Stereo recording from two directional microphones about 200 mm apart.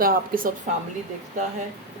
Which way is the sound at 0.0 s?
45° right (ahead or behind).